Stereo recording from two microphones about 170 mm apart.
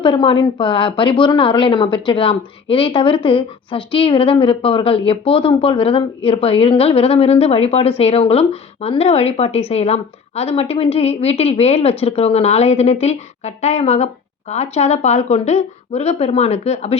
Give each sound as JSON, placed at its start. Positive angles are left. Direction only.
{"t": 0.0, "sound": "speech", "side_deg": 30}